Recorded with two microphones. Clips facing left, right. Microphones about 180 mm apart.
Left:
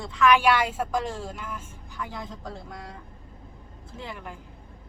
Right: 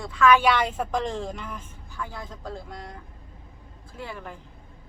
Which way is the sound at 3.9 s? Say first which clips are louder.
Right 1 dB; 20° left (ahead or behind).